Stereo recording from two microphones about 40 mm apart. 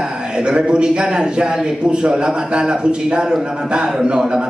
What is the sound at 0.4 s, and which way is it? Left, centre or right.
A man's voice, right.